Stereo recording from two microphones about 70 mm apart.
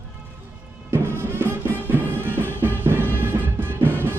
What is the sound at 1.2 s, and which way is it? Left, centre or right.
Music, right.